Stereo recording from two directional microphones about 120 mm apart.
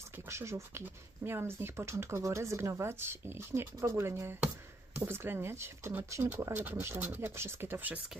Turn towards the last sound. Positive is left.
turn(degrees=-15)  # may be behind; listen again after turning